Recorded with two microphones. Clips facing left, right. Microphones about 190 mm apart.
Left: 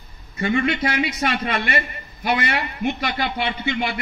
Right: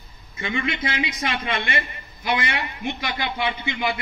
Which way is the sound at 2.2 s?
60° left (ahead or behind).